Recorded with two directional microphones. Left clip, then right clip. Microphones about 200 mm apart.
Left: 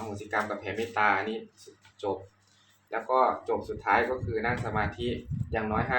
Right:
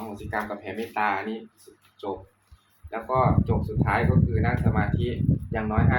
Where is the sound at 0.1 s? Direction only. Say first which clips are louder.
Left 1 dB; 5° right (ahead or behind).